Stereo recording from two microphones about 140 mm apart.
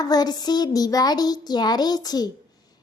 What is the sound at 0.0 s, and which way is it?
Child singing, 30° left (ahead or behind).